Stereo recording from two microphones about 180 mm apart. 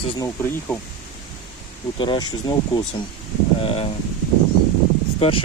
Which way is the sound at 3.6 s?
30° left (ahead or behind).